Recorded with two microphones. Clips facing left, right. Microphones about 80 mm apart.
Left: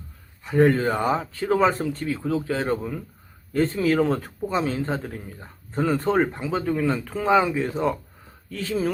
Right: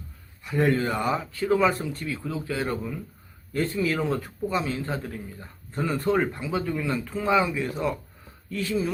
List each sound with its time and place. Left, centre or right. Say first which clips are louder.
0.4 s speech: left 5 dB; left
7.0 s speech: left 2 dB; left
7.3 s speech: left 4 dB; left